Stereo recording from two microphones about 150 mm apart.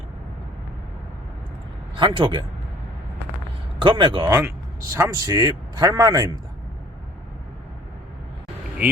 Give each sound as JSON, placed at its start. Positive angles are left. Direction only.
{"t": 2.0, "sound": "speech", "side_deg": -35}
{"t": 3.8, "sound": "speech", "side_deg": -35}
{"t": 4.3, "sound": "speech", "side_deg": -20}